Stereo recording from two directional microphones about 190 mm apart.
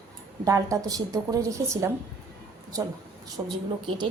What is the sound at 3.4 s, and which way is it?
Speech, 20° right (ahead or behind).